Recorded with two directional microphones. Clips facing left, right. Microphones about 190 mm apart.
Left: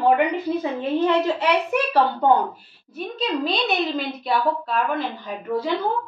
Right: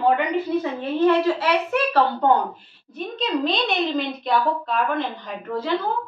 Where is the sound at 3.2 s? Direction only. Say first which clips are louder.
Right 1 dB; 5° left (ahead or behind).